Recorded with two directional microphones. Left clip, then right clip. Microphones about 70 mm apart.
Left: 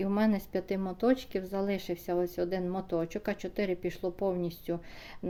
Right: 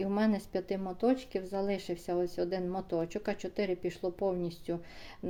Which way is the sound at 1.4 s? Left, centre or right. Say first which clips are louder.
Left 1 dB; left.